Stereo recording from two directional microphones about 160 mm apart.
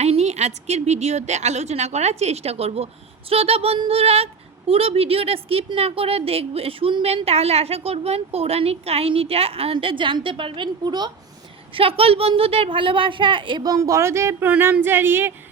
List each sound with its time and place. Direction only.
0.0 s a woman's voice: 40° right (ahead or behind); by 15.3 s 15° right (ahead or behind)